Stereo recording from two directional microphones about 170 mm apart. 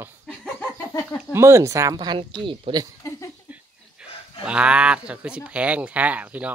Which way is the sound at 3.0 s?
20° left (ahead or behind).